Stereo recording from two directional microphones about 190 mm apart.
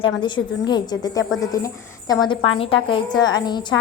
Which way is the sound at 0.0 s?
25° left (ahead or behind).